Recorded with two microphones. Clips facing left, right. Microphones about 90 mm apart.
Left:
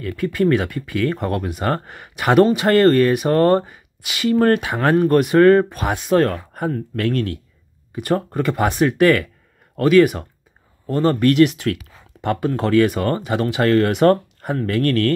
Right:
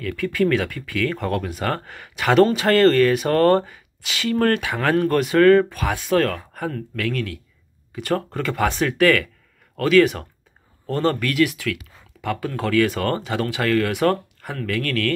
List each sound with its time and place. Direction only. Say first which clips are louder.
0.0 s speech: left 2 dB; 25° left (ahead or behind)
7.0 s speech: left 4 dB; 35° left (ahead or behind)
7.9 s speech: left 3 dB; 20° left (ahead or behind)
11.1 s speech: left 6 dB; 30° left (ahead or behind)